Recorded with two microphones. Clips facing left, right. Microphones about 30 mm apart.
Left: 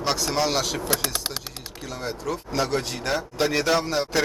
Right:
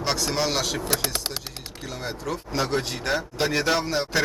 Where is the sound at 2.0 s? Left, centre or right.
Centre.